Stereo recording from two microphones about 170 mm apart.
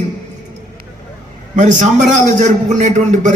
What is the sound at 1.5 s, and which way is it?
A man's voice, 45° right (ahead or behind).